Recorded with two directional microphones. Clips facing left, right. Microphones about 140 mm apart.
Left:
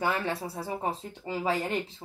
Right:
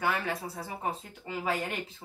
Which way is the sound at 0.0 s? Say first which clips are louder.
Left 2 dB; 30° left (ahead or behind).